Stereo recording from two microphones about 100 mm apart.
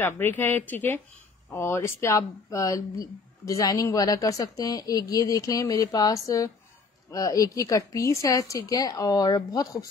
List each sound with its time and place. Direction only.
0.0 s speech: 20° left (ahead or behind)